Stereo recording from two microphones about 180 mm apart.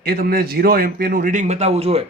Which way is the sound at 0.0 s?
55° right (ahead or behind).